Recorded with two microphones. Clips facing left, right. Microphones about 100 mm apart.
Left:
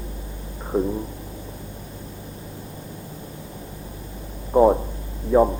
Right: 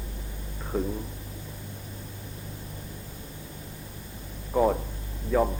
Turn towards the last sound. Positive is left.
turn(degrees=25)  # may be behind; listen again after turning